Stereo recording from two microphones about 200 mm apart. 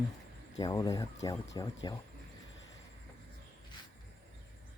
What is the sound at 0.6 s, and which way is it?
Speech, 20° left (ahead or behind).